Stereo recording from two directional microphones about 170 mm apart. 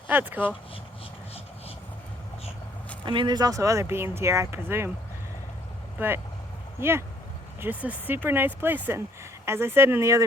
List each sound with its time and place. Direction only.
0.1 s speech: 10° right (ahead or behind)
3.0 s speech: 30° right (ahead or behind)
6.0 s speech: 10° right (ahead or behind)